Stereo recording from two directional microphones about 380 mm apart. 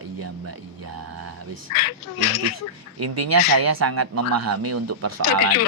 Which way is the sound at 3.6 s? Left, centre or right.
Right.